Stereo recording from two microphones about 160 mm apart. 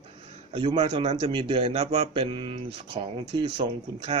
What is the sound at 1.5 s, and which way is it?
Speech, 40° right (ahead or behind).